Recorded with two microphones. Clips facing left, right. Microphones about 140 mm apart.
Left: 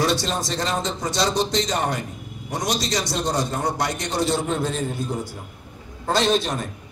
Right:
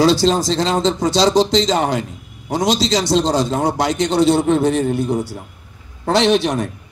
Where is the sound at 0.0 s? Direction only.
90° right; by 6.7 s 75° right (ahead or behind).